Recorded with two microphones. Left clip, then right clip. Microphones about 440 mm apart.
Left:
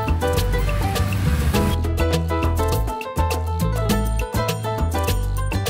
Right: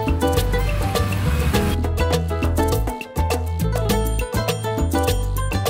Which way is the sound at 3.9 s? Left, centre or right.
Right.